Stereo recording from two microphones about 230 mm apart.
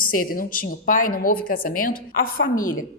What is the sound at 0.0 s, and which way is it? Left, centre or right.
A woman's voice, left.